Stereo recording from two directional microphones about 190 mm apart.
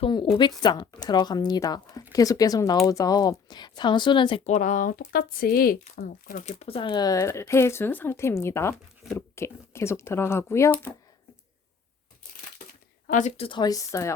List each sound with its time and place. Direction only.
0.0 s a woman's voice: 25° left (ahead or behind)
13.1 s a woman's voice: 40° left (ahead or behind); by 14.1 s 15° left (ahead or behind)